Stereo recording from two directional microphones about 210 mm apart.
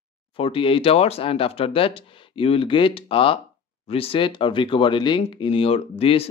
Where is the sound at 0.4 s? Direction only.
25° left (ahead or behind).